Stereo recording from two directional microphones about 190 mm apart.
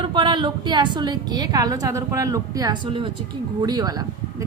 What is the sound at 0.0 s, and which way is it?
A woman's voice, 25° right (ahead or behind).